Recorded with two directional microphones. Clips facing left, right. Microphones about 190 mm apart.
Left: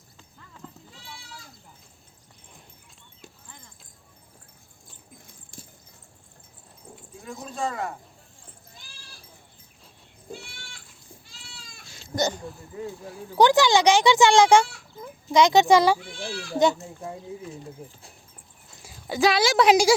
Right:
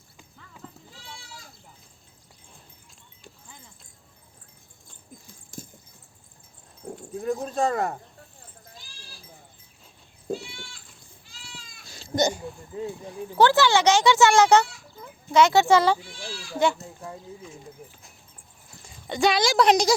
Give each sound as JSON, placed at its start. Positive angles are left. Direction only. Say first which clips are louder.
{"t": 0.6, "sound": "sheep", "louder": "even", "side_deg": 0}
{"t": 5.5, "sound": "horse", "louder": "right 7 dB", "side_deg": -40}
{"t": 6.8, "sound": "dog", "louder": "right 10 dB", "side_deg": -60}
{"t": 7.3, "sound": "speech", "louder": "right 6 dB", "side_deg": -45}
{"t": 12.1, "sound": "a sound", "louder": "right 2 dB", "side_deg": -15}
{"t": 13.1, "sound": "speech", "louder": "left 1 dB", "side_deg": 15}
{"t": 16.0, "sound": "a child's voice", "louder": "left 4 dB", "side_deg": 60}
{"t": 18.8, "sound": "speech", "louder": "left 1 dB", "side_deg": 5}